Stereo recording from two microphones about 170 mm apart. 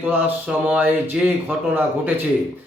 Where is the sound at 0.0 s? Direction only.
10° right (ahead or behind).